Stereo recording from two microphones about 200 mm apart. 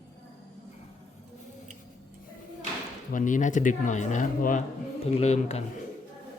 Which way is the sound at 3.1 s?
40° left (ahead or behind).